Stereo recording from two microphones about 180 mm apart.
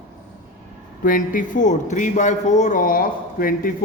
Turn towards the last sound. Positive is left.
turn(degrees=55)  # may be behind; listen again after turning